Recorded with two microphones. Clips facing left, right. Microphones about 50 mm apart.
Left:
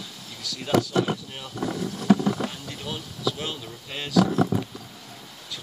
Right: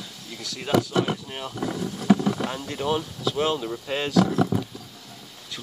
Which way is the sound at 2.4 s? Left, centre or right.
Right.